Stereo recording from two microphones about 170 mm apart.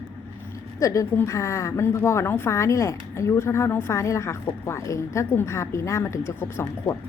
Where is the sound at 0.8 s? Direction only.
15° left (ahead or behind).